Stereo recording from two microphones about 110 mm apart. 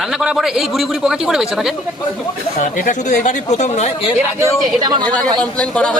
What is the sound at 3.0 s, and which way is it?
Speech, 90° left.